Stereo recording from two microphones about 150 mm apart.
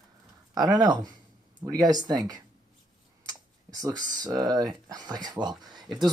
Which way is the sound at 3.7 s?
25° right (ahead or behind).